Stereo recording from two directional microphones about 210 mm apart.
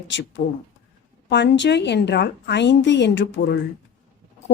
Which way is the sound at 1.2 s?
55° left (ahead or behind).